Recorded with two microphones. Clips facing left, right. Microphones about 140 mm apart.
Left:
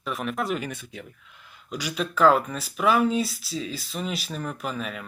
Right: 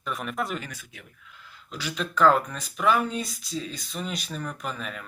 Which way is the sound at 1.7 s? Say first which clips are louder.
Left 2 dB; 10° left (ahead or behind).